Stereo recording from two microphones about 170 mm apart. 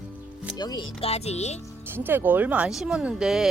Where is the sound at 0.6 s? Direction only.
25° left (ahead or behind).